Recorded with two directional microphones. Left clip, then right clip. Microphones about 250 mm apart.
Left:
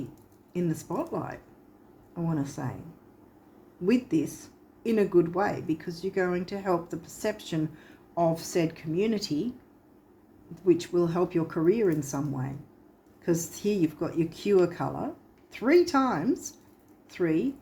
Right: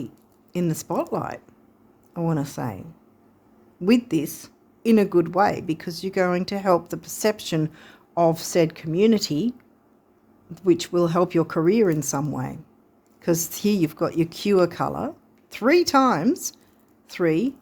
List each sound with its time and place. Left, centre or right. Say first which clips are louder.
0.5 s speech: right 6 dB; right
3.8 s speech: right 5 dB; right